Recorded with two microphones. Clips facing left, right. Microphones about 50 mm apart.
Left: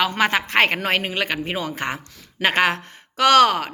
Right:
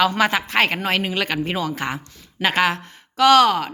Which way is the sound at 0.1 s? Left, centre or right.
Left.